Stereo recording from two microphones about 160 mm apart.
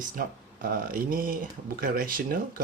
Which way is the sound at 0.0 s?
60° right (ahead or behind).